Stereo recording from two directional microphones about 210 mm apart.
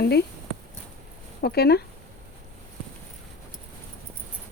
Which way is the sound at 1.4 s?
50° left (ahead or behind).